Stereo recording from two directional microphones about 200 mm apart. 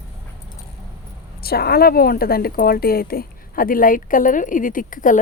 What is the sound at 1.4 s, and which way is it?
A woman's voice, 50° left (ahead or behind).